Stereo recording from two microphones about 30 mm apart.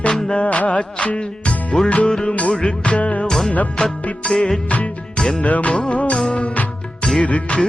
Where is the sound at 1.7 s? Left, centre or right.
Left.